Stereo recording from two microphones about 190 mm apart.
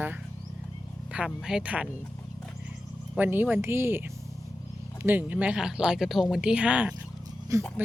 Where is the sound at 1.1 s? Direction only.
5° right (ahead or behind).